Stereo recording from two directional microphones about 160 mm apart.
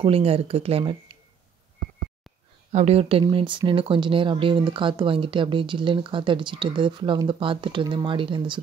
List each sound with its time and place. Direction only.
0.0 s speech: 35° right (ahead or behind)
2.7 s speech: 40° right (ahead or behind)